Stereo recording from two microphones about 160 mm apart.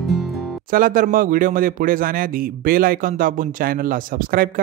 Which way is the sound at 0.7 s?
60° right (ahead or behind).